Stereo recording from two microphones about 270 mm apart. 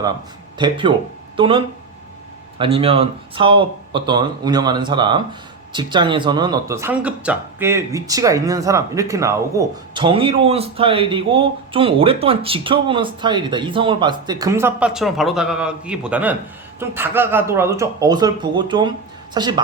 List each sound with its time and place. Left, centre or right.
0.6 s speech: centre